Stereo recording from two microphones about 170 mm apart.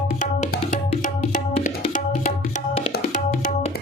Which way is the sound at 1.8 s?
50° left (ahead or behind).